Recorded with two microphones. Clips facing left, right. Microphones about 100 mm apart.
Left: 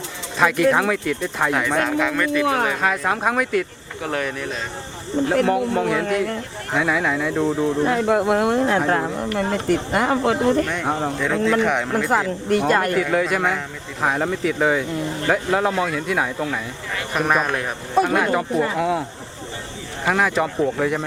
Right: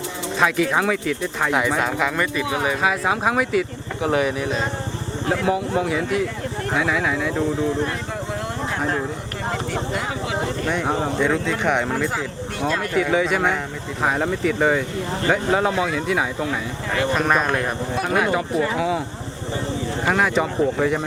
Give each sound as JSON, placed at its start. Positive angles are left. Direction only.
{"t": 0.3, "sound": "speech", "side_deg": 0}
{"t": 5.5, "sound": "speech", "side_deg": 0}
{"t": 7.9, "sound": "speech", "side_deg": 70}
{"t": 8.9, "sound": "speech", "side_deg": 60}
{"t": 10.7, "sound": "speech", "side_deg": 0}
{"t": 12.0, "sound": "speech", "side_deg": 55}
{"t": 12.9, "sound": "speech", "side_deg": 0}
{"t": 20.1, "sound": "speech", "side_deg": 0}